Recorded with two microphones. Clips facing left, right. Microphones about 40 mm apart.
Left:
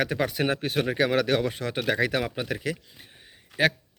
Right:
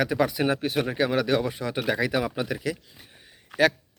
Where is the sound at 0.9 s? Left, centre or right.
Left.